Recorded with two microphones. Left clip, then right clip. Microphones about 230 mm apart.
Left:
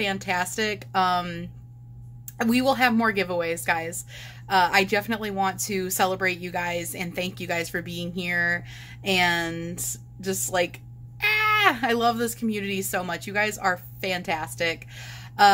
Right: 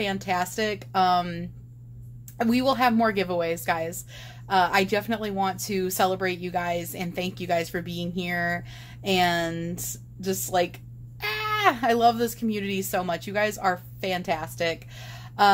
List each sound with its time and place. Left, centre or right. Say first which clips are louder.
0.0 s a woman's voice: left 1 dB; centre